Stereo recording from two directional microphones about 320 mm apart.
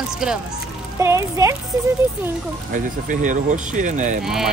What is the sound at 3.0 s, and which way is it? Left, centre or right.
Speech, right.